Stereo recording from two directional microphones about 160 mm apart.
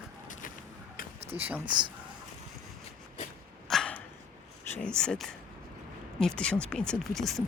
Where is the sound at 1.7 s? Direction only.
30° right (ahead or behind).